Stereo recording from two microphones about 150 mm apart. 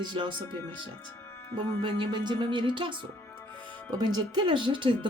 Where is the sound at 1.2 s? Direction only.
20° left (ahead or behind).